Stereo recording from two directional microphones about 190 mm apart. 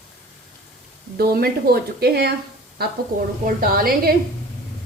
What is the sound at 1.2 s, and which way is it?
A woman's voice, 55° right (ahead or behind).